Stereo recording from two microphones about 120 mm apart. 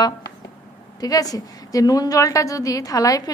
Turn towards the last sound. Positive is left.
turn(degrees=30)  # may be behind; listen again after turning